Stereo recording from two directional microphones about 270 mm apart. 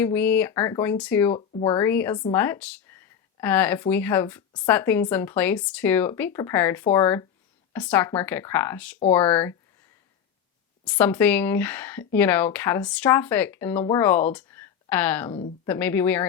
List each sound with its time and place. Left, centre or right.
0.0 s a woman's voice: centre
1.4 s a woman's voice: centre
10.8 s a woman's voice: centre
14.3 s a sound: centre
15.3 s speech: centre
15.6 s a woman's voice: centre